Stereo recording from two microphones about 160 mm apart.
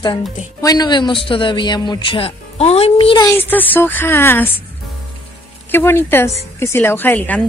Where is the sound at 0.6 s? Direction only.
25° left (ahead or behind).